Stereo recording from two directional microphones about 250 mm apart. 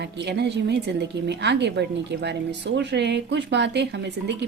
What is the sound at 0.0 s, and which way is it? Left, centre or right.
A woman's voice, right.